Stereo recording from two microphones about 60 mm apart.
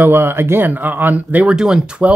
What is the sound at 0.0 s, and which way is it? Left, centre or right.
Speech, right.